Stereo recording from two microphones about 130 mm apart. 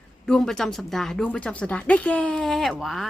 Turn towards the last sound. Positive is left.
turn(degrees=0)  # may be behind; listen again after turning